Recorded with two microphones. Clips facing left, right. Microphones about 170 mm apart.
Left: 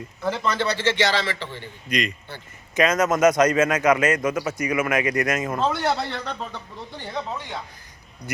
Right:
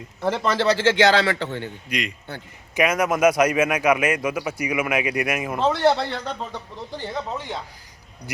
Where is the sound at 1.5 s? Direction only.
55° right (ahead or behind).